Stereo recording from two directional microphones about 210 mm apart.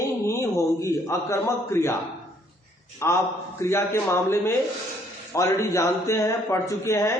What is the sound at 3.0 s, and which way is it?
A man's voice, 15° left (ahead or behind).